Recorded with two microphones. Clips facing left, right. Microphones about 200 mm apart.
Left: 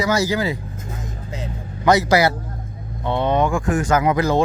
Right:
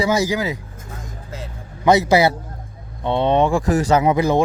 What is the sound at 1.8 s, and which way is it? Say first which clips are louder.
Speech: right 1 dB; 20° right (ahead or behind).